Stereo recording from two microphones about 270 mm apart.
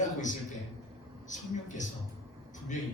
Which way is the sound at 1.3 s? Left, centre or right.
Left.